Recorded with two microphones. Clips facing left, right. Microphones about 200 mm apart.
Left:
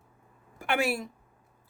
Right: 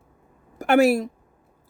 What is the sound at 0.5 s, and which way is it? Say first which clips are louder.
Speech: right 11 dB; 40° right (ahead or behind).